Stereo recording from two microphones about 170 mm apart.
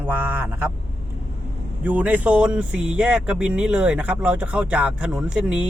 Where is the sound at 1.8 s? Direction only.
10° right (ahead or behind).